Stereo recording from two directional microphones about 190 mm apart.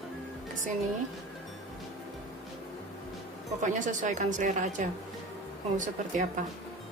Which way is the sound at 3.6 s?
40° right (ahead or behind).